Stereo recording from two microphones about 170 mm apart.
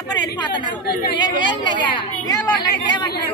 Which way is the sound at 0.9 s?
65° left (ahead or behind).